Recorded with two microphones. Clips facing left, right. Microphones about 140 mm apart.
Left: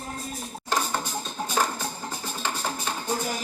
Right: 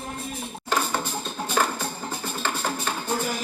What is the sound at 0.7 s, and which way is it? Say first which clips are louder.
Music: right 2 dB; 40° left (ahead or behind).